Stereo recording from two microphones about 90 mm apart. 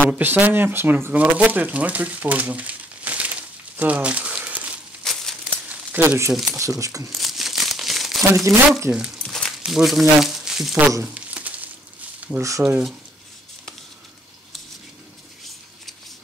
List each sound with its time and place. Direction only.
0.2 s speech: 20° right (ahead or behind)
5.1 s a sound: 5° left (ahead or behind)
5.7 s a sound: 20° right (ahead or behind)
6.3 s speech: centre (ahead or behind)
6.6 s speech: 35° right (ahead or behind)
7.2 s crumpling: centre (ahead or behind)
8.5 s speech: 35° right (ahead or behind)
8.9 s speech: 10° right (ahead or behind)
11.1 s crumpling: 15° right (ahead or behind)
12.4 s speech: 35° right (ahead or behind)
12.6 s speech: 10° right (ahead or behind)